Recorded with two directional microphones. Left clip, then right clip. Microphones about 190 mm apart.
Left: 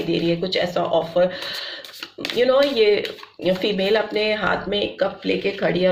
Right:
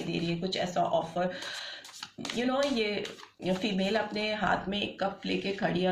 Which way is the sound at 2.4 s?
30° left (ahead or behind).